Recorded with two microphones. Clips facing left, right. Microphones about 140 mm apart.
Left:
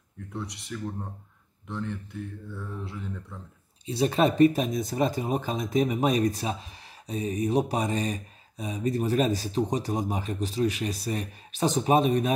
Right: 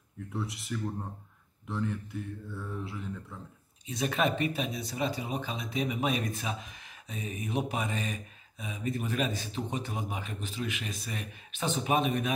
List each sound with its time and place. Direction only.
0.3 s speech: centre (ahead or behind)
3.8 s speech: 30° left (ahead or behind)